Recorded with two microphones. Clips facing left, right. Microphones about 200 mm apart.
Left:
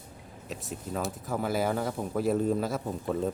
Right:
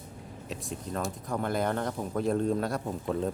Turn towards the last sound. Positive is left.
turn(degrees=0)  # may be behind; listen again after turning